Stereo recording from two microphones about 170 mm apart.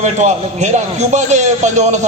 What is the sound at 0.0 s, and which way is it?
A man's voice, 45° right (ahead or behind).